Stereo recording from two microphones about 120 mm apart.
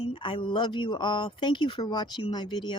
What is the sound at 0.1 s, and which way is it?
Speech, 45° left (ahead or behind).